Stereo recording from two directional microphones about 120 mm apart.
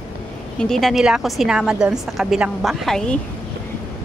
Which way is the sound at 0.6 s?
5° left (ahead or behind).